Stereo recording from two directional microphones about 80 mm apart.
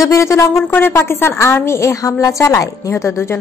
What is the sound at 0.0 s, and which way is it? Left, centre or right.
A woman's voice, left.